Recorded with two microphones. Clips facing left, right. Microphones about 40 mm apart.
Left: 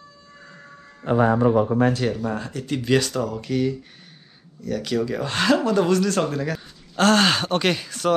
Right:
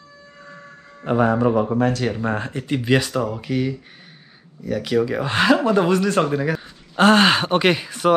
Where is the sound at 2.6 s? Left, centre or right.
Right.